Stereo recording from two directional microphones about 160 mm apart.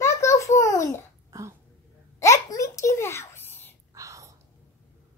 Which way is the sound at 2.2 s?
20° left (ahead or behind).